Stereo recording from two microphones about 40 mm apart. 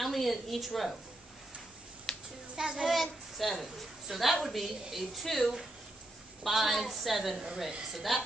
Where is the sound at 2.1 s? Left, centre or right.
Centre.